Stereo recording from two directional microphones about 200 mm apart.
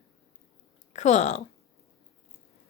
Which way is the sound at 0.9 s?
35° left (ahead or behind).